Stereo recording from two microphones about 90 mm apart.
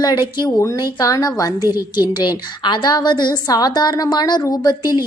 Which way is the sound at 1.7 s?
50° left (ahead or behind).